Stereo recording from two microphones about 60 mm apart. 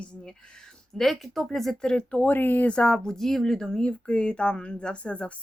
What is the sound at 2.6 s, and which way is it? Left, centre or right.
Speech, centre.